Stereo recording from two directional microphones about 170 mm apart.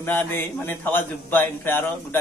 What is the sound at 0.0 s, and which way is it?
A man's voice, 10° left (ahead or behind).